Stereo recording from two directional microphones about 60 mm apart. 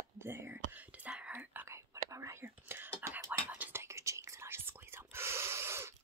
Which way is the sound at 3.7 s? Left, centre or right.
Right.